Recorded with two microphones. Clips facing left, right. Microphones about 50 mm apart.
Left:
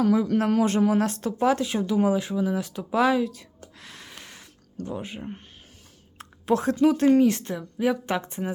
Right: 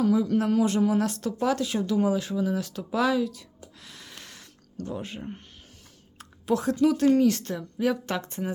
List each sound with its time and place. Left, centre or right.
0.0 s speech: left
3.6 s gasp: left
4.1 s snort: centre
4.9 s speech: centre
6.1 s speech: left
7.5 s speech: centre